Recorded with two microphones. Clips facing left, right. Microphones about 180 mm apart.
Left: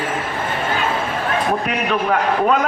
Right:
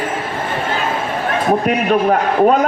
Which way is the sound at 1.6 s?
40° right (ahead or behind).